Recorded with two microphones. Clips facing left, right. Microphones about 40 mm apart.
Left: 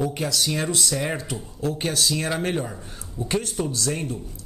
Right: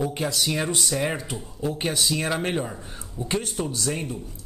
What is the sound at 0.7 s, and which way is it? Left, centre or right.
Speech, right.